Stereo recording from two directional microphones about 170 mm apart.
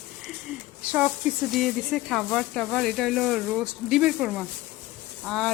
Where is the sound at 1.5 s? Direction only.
Centre (ahead or behind).